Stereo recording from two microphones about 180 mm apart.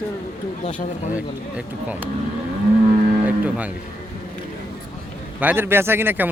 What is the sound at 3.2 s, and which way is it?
Speech, 10° right (ahead or behind).